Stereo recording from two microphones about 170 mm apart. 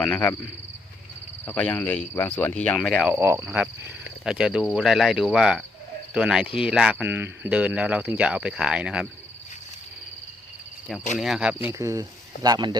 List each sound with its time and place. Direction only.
0.0 s speech: 10° left (ahead or behind)
1.5 s speech: 5° left (ahead or behind)
3.1 s speech: 15° right (ahead or behind)
11.2 s speech: 5° right (ahead or behind)
11.7 s speech: 20° right (ahead or behind)